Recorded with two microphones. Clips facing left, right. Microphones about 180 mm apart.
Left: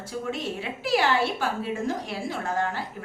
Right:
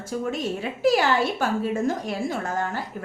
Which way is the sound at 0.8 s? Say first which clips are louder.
Right 3 dB; 45° right (ahead or behind).